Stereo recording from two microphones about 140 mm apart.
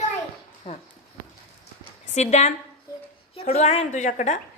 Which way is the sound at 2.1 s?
55° left (ahead or behind).